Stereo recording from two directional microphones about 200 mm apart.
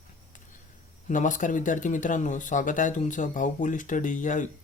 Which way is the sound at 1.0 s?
40° left (ahead or behind).